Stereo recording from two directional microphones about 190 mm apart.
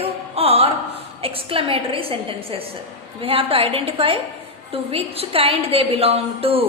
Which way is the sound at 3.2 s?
30° right (ahead or behind).